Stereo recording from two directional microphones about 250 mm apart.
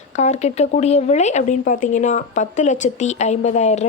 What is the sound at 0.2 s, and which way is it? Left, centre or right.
A woman's voice, left.